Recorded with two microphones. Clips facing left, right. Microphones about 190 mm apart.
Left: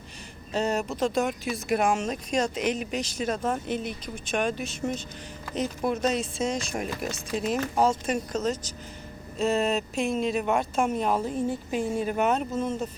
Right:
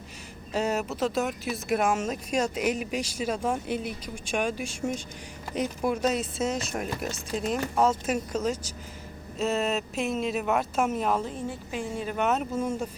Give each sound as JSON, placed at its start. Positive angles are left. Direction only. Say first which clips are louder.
{"t": 0.5, "sound": "speech", "louder": "left 1 dB", "side_deg": -5}